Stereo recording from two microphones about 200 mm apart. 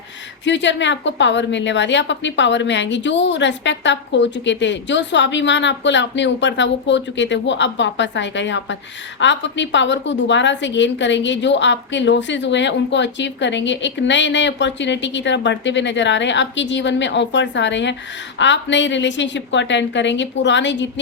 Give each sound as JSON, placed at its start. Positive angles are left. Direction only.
{"t": 0.4, "sound": "a woman's voice", "side_deg": 60}